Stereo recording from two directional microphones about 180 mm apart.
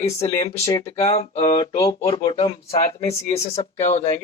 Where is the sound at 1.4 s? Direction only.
25° left (ahead or behind).